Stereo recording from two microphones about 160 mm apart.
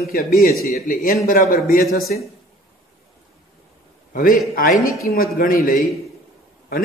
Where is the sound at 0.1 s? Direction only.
65° left (ahead or behind).